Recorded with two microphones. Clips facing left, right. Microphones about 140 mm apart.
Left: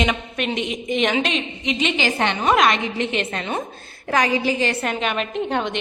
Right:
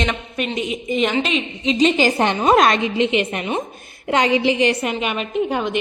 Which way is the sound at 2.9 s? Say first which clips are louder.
Right 5 dB; 15° right (ahead or behind).